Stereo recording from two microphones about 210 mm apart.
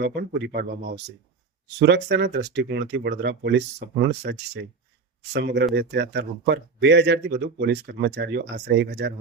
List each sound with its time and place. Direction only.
0.0 s speech: 55° right (ahead or behind)